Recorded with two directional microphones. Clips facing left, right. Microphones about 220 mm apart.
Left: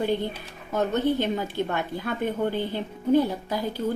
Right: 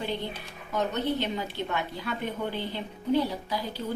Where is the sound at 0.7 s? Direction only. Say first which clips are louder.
Left 5 dB; 50° left (ahead or behind).